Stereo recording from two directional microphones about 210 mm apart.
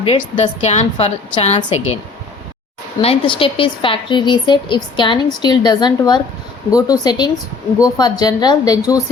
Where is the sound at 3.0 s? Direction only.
25° left (ahead or behind).